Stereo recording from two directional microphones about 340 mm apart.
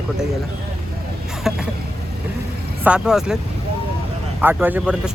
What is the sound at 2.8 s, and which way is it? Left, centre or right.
Speech, centre.